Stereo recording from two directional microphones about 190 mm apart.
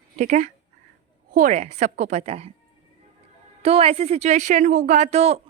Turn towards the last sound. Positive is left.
turn(degrees=-35)  # may be behind; listen again after turning